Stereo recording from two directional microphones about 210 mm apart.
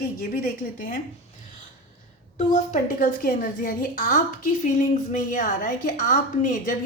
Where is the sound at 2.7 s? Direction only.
40° left (ahead or behind).